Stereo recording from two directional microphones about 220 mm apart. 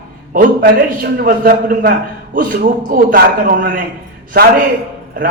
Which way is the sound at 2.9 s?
40° right (ahead or behind).